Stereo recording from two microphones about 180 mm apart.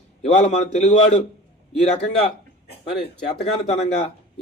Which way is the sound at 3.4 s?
35° left (ahead or behind).